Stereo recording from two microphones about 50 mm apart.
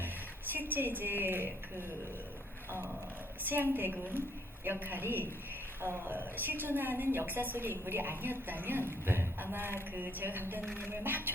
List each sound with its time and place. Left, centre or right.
0.5 s a woman's voice: right
3.5 s a woman's voice: right